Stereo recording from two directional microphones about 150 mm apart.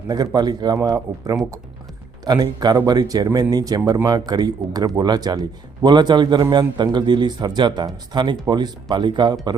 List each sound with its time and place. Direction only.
0.1 s a man's voice: 25° right (ahead or behind)